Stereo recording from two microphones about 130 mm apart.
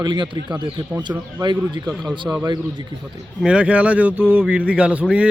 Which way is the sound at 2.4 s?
35° right (ahead or behind).